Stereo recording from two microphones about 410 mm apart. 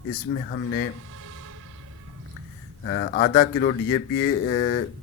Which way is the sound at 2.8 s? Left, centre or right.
Left.